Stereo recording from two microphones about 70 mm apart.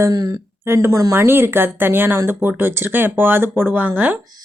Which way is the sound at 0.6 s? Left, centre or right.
Right.